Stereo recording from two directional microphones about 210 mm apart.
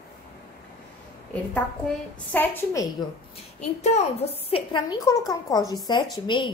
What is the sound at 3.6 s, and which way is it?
A woman's voice, 30° left (ahead or behind).